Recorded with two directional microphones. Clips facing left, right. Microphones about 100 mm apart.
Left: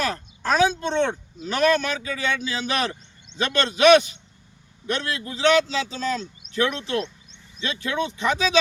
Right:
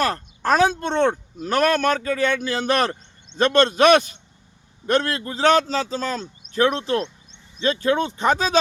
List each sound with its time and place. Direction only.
0.0 s speech: 50° right (ahead or behind)